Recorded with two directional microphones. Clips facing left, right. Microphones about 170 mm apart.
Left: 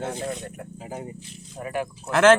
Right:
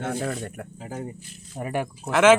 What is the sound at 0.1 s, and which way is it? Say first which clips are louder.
Speech: right 2 dB; 55° right (ahead or behind).